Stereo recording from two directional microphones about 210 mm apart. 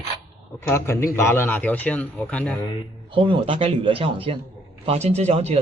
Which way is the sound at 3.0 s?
25° right (ahead or behind).